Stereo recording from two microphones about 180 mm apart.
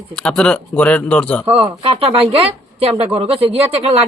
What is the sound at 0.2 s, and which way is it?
Speech, 5° left (ahead or behind).